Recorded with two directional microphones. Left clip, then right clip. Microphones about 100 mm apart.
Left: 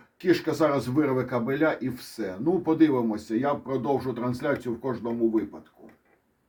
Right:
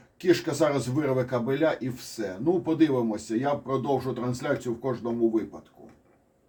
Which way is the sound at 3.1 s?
40° left (ahead or behind).